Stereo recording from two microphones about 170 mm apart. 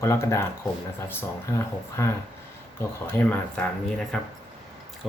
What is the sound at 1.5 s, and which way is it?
Speech, 15° left (ahead or behind).